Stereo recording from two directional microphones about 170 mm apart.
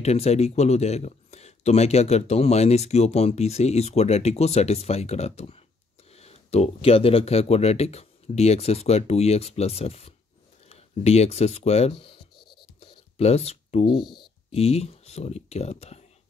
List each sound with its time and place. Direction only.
0.0 s speech: 40° left (ahead or behind)
12.4 s writing: 30° left (ahead or behind)
14.5 s speech: 40° left (ahead or behind)